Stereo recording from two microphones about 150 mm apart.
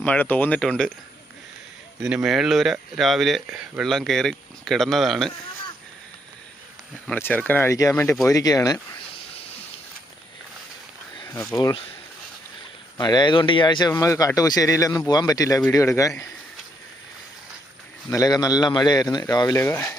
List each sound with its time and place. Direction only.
0.0 s speech: 10° left (ahead or behind)
2.0 s speech: 5° right (ahead or behind)
7.1 s speech: 10° left (ahead or behind)
11.3 s speech: 25° left (ahead or behind)
13.0 s speech: 30° left (ahead or behind)
18.1 s speech: 25° left (ahead or behind)